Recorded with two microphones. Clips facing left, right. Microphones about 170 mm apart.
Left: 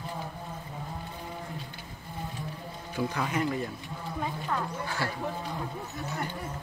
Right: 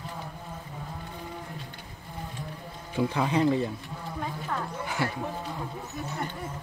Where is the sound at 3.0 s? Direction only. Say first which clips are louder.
Right 5 dB; 25° right (ahead or behind).